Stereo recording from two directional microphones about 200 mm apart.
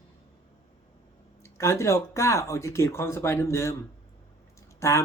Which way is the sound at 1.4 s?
15° left (ahead or behind).